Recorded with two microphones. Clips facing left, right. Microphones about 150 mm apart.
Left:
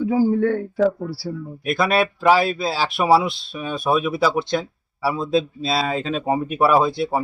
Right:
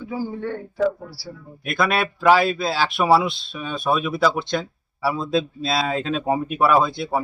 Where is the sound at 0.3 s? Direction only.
55° left (ahead or behind).